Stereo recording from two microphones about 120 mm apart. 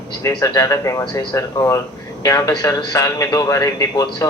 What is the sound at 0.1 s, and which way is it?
Speech, 30° left (ahead or behind).